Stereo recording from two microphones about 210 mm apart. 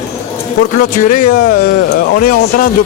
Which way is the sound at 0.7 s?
40° left (ahead or behind).